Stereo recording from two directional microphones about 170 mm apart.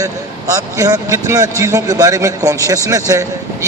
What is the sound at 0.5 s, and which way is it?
A man's voice, 20° right (ahead or behind).